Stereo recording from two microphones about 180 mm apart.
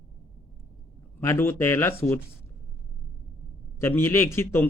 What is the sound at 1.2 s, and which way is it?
A man's voice, 15° left (ahead or behind).